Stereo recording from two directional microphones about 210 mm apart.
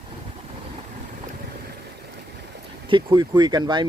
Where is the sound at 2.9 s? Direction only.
25° right (ahead or behind).